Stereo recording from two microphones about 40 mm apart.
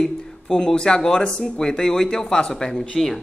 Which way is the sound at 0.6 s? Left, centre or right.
Centre.